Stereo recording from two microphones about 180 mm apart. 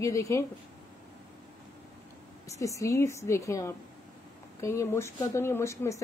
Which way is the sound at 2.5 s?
15° left (ahead or behind).